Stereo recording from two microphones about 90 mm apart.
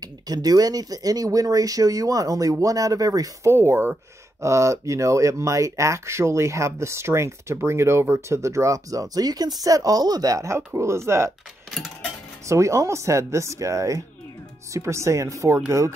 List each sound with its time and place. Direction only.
0.3 s speech: 45° right (ahead or behind)
3.5 s speech: 25° right (ahead or behind)
12.4 s speech: 35° right (ahead or behind)